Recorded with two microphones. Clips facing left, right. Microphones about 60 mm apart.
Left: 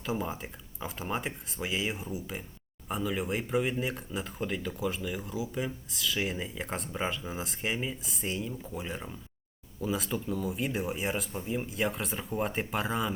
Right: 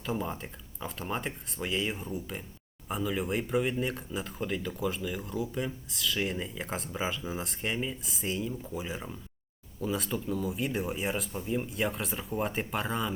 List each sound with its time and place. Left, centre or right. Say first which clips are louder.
0.0 s speech: even; centre